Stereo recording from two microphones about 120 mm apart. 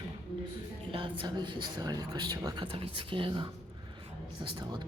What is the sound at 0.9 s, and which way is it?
A woman's voice, 45° right (ahead or behind).